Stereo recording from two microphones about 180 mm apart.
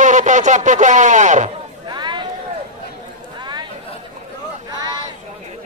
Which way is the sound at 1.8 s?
25° right (ahead or behind).